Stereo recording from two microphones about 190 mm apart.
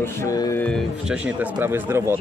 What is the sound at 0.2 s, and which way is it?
Speech, 15° left (ahead or behind).